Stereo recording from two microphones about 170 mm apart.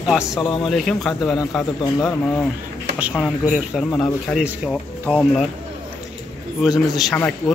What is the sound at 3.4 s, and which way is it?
Speech, 5° right (ahead or behind).